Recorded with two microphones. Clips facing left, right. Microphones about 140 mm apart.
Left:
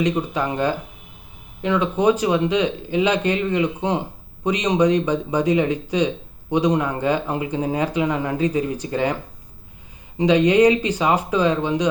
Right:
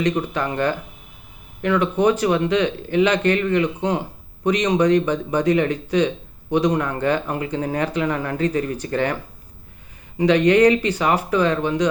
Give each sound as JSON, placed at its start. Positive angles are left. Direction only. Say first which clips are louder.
{"t": 0.0, "sound": "speech", "louder": "even", "side_deg": 15}
{"t": 10.2, "sound": "speech", "louder": "even", "side_deg": 15}